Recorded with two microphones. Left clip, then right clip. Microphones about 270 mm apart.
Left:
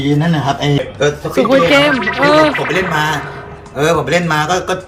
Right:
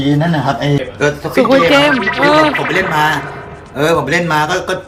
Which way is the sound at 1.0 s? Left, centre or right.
Centre.